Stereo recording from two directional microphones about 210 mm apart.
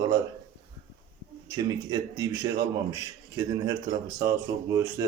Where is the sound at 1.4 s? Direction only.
15° right (ahead or behind).